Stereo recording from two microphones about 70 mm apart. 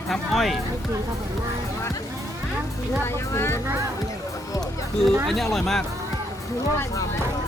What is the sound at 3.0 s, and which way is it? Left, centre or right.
Speech, left.